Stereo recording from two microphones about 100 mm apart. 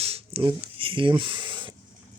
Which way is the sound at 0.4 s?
60° right (ahead or behind).